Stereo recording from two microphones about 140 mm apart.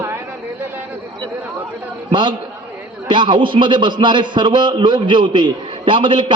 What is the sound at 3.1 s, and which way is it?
A man's voice, 35° right (ahead or behind).